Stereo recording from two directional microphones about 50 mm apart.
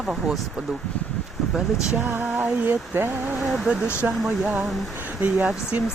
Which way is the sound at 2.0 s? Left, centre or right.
Right.